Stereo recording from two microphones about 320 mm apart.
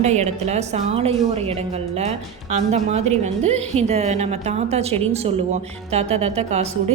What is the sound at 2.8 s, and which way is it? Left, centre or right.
A woman's voice, centre.